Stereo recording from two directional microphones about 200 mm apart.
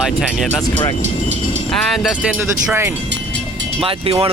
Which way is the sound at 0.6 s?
20° left (ahead or behind).